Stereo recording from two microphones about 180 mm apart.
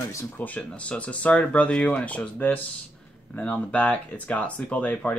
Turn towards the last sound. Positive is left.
turn(degrees=5)  # may be behind; listen again after turning